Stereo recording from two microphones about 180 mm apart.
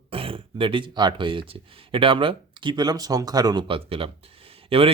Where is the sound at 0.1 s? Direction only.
30° right (ahead or behind).